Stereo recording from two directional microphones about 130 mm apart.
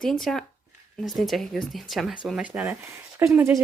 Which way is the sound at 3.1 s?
20° right (ahead or behind).